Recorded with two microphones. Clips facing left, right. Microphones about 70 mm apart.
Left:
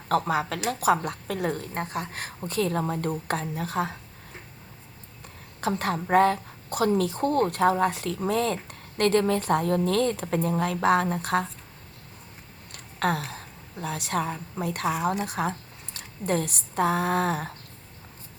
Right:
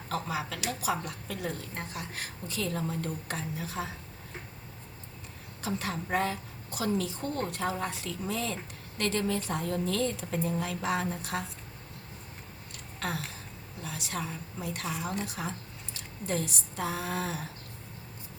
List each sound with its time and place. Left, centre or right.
0.1 s a woman's voice: left
5.5 s a woman's voice: left
12.7 s a sound: left
13.8 s a woman's voice: left